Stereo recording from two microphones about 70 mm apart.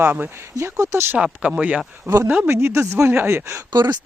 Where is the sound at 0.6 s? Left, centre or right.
Right.